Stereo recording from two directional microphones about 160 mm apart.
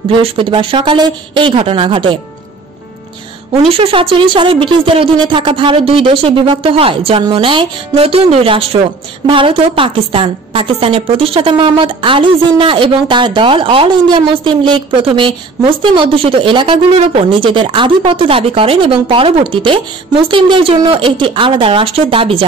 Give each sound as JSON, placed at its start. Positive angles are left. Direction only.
{"t": 0.1, "sound": "a woman's voice", "side_deg": -30}
{"t": 3.6, "sound": "a woman's voice", "side_deg": -35}